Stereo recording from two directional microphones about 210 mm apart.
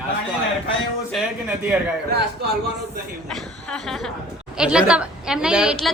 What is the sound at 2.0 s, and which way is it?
Speech, 50° right (ahead or behind).